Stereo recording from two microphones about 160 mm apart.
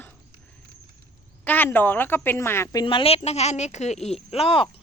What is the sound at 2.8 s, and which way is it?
Speech, 30° left (ahead or behind).